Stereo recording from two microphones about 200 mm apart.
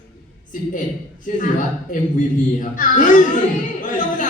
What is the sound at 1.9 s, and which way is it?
A man's voice, 40° left (ahead or behind).